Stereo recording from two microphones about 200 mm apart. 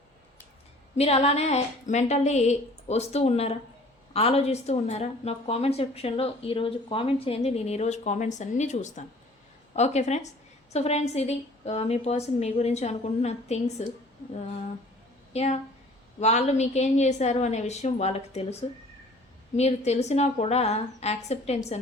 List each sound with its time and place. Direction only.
0.9 s a woman's voice: 30° left (ahead or behind)
15.3 s a woman's voice: 35° left (ahead or behind)
19.5 s a woman's voice: 35° left (ahead or behind)